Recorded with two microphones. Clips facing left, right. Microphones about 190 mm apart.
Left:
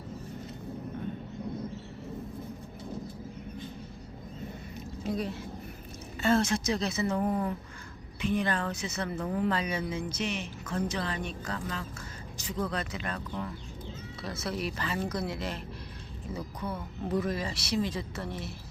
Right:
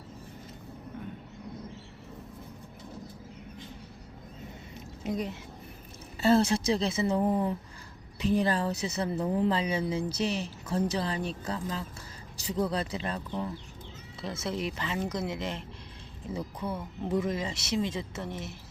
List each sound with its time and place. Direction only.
4.7 s a sound: 20° right (ahead or behind)
6.2 s speech: 35° right (ahead or behind)
8.2 s a woman's voice: 35° right (ahead or behind); by 18.5 s 20° right (ahead or behind)